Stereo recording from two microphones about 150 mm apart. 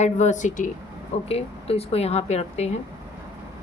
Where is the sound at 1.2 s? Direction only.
40° left (ahead or behind).